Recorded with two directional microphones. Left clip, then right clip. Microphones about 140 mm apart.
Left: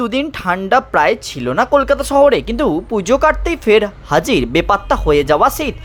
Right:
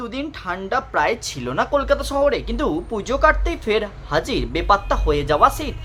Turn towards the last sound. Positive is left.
turn(degrees=35)  # may be behind; listen again after turning